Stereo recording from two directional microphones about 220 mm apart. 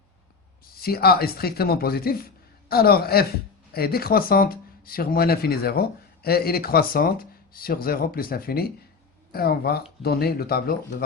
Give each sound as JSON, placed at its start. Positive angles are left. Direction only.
{"t": 0.6, "sound": "speech", "side_deg": 45}